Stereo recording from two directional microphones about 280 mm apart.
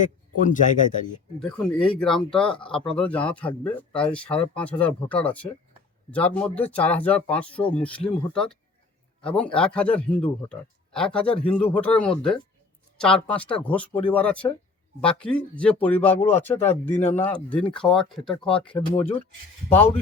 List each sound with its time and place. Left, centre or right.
0.0 s speech: left
1.4 s a man's voice: centre